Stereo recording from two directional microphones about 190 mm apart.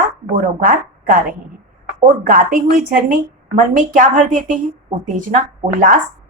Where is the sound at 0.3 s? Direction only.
45° right (ahead or behind).